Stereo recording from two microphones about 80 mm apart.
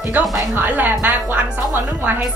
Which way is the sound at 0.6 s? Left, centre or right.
Right.